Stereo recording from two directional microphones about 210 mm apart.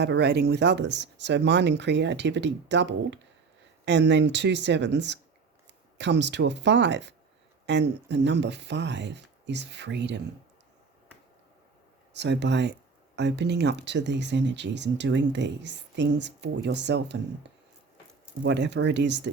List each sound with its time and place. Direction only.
0.0 s speech: 55° right (ahead or behind)
12.1 s speech: 55° right (ahead or behind)
18.4 s speech: 55° right (ahead or behind)